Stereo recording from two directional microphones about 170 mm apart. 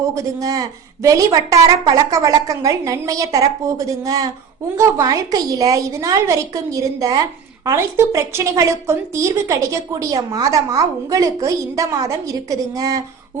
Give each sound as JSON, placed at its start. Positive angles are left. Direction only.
{"t": 0.1, "sound": "a woman's voice", "side_deg": -20}